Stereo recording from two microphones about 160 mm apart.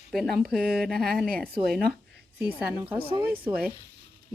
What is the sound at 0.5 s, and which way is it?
Speech, 70° right (ahead or behind).